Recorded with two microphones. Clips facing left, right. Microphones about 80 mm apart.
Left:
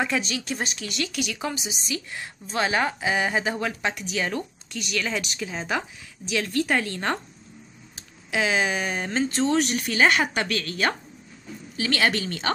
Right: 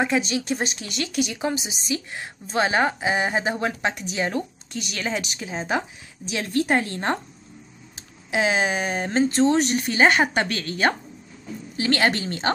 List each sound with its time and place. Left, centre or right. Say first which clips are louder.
0.0 s speech: right 4 dB; right
8.3 s speech: right 2 dB; right